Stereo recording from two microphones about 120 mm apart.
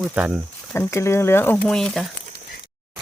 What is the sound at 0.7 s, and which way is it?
Speech, 20° left (ahead or behind).